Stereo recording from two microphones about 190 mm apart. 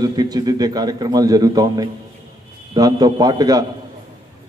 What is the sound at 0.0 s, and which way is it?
A man's voice, 20° right (ahead or behind).